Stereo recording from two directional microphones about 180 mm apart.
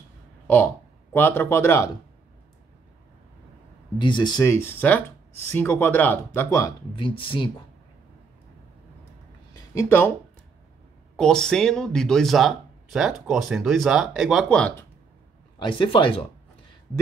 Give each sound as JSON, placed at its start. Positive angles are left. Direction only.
{"t": 1.1, "sound": "speech", "side_deg": 10}
{"t": 4.0, "sound": "speech", "side_deg": 25}
{"t": 7.0, "sound": "speech", "side_deg": 30}
{"t": 9.8, "sound": "speech", "side_deg": 15}
{"t": 11.1, "sound": "speech", "side_deg": 5}
{"t": 15.6, "sound": "speech", "side_deg": 30}